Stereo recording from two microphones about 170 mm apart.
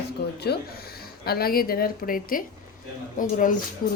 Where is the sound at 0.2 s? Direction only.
70° left (ahead or behind).